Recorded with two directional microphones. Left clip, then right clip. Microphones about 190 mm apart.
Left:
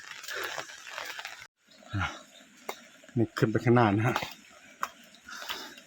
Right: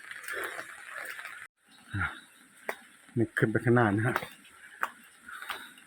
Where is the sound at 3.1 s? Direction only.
10° left (ahead or behind).